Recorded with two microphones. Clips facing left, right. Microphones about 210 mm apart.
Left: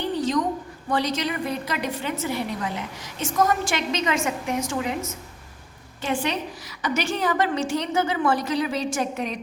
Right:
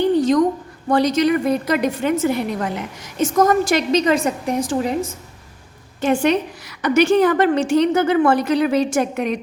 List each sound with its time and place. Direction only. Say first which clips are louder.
0.9 s a woman's voice: right 9 dB; 45° right (ahead or behind)
6.0 s a woman's voice: right 9 dB; 50° right (ahead or behind)